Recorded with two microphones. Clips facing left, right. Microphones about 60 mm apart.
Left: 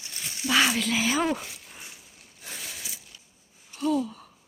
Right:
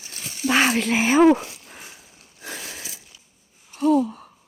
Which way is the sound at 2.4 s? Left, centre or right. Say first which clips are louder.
Right 5 dB; right.